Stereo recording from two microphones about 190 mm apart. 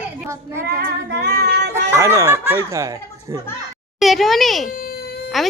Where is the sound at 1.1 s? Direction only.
60° right (ahead or behind).